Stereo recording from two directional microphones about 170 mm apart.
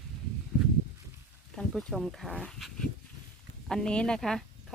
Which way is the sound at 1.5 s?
Centre (ahead or behind).